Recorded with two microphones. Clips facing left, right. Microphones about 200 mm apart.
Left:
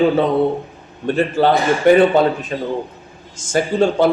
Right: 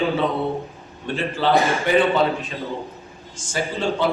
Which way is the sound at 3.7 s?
45° left (ahead or behind).